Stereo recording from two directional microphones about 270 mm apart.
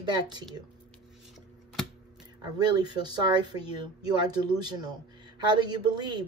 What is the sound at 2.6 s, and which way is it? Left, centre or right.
Speech, centre.